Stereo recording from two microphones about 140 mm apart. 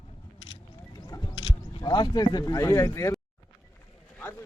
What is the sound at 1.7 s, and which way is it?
Speech, 30° left (ahead or behind).